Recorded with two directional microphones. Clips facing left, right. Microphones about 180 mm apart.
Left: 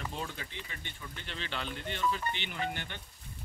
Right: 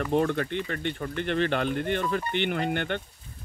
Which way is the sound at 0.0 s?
65° right (ahead or behind).